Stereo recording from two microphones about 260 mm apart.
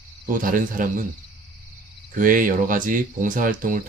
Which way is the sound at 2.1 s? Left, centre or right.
Right.